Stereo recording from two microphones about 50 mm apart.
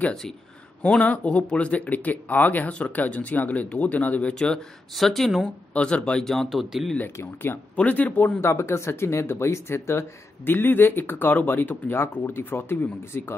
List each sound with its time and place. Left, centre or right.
0.8 s speech: left
4.9 s speech: centre
5.8 s speech: left
6.2 s speech: centre
6.5 s speech: centre
7.7 s speech: left
8.4 s speech: left
10.4 s speech: left